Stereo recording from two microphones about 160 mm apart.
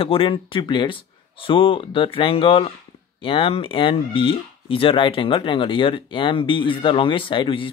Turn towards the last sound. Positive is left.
turn(degrees=30)  # may be behind; listen again after turning